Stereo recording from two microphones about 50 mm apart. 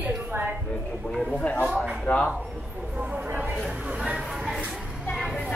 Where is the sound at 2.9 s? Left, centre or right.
Right.